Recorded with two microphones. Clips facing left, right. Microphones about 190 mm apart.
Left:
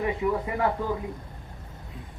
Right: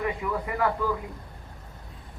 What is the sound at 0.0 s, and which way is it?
Speech, 25° left (ahead or behind).